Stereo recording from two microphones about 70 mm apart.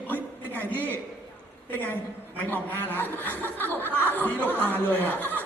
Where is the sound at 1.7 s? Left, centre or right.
Left.